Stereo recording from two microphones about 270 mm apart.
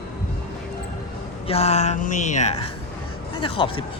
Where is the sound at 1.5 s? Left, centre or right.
Left.